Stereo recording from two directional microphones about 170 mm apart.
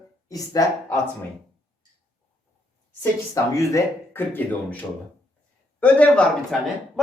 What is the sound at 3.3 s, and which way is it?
A man's voice, 20° left (ahead or behind).